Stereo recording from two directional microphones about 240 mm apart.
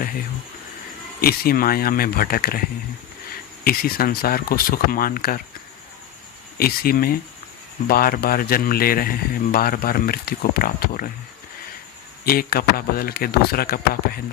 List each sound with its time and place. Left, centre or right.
1.2 s speech: left
3.6 s speech: left
6.6 s speech: left
12.2 s speech: left